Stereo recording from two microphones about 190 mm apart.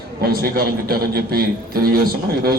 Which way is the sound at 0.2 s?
50° right (ahead or behind).